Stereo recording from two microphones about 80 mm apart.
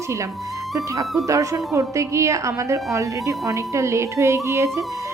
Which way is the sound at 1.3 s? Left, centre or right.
Right.